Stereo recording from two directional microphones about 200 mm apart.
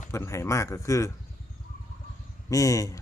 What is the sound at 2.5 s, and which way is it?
Speech, 15° left (ahead or behind).